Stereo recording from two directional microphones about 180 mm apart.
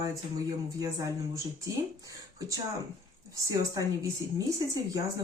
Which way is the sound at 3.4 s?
20° right (ahead or behind).